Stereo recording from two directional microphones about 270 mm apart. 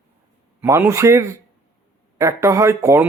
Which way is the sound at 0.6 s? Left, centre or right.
Centre.